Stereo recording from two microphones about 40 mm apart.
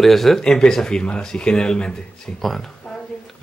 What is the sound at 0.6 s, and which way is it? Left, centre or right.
Speech, centre.